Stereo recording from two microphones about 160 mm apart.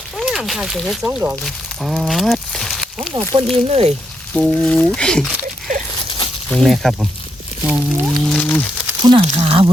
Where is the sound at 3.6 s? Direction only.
40° right (ahead or behind).